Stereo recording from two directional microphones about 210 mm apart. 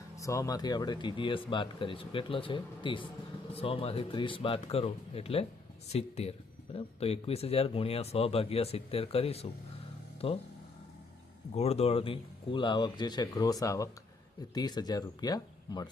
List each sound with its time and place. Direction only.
0.2 s speech: 15° left (ahead or behind)
11.5 s speech: 30° left (ahead or behind)